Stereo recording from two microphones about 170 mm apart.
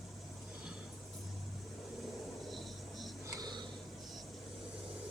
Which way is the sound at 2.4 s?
Centre (ahead or behind).